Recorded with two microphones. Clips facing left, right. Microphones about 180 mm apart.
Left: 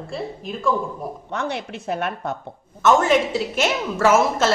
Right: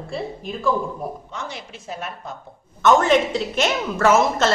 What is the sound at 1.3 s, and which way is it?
A woman's voice, 60° left (ahead or behind).